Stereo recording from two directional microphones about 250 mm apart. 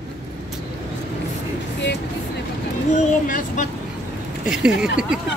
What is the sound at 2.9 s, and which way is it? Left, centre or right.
Speech, left.